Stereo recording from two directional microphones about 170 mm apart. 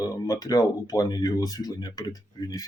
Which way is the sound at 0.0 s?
20° left (ahead or behind).